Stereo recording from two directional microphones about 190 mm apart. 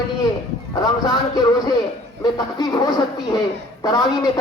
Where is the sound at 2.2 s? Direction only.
20° left (ahead or behind).